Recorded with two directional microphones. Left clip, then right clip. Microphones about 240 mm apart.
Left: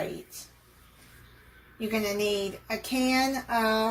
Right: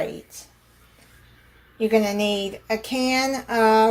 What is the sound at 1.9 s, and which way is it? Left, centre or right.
Speech, right.